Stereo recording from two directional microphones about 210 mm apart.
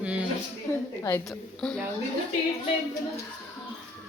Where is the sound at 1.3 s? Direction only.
5° left (ahead or behind).